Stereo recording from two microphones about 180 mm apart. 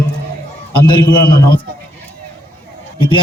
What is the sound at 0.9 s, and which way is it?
Speech, 25° left (ahead or behind).